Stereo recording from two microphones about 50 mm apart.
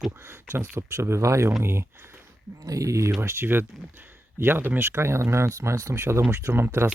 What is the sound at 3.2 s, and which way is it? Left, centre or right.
Speech, right.